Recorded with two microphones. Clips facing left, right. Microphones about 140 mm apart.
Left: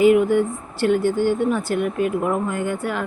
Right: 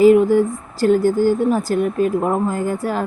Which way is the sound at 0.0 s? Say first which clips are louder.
Right 4 dB; 35° right (ahead or behind).